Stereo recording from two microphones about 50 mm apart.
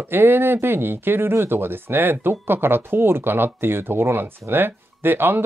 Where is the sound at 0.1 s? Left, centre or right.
Right.